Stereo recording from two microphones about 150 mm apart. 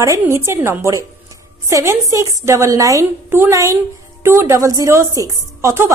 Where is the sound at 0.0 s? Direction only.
20° right (ahead or behind).